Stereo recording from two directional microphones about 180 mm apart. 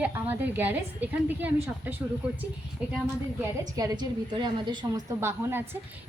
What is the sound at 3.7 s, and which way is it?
A woman's voice, 20° right (ahead or behind).